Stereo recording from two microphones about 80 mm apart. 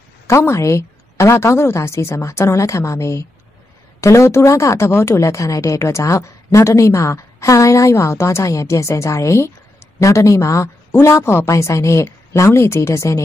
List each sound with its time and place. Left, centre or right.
0.3 s speech: left